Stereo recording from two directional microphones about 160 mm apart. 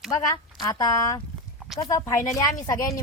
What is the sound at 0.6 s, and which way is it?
Speech, 25° left (ahead or behind).